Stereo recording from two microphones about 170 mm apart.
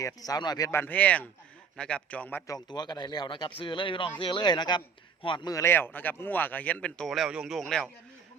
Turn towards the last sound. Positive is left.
turn(degrees=5)  # may be behind; listen again after turning